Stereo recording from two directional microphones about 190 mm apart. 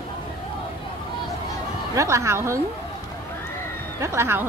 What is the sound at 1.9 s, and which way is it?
Speech, 15° right (ahead or behind).